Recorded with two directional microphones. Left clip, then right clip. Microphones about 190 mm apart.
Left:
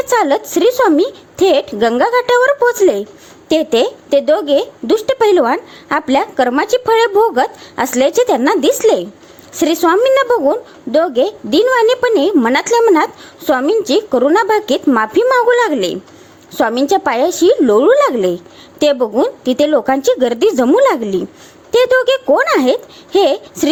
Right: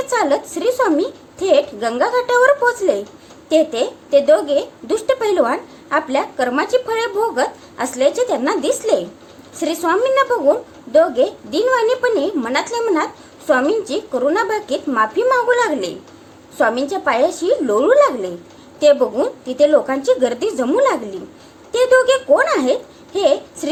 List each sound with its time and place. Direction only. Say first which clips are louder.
0.1 s speech: left 5 dB; 40° left (ahead or behind)